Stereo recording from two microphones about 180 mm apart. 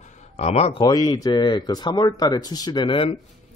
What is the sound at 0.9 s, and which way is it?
Speech, 20° left (ahead or behind).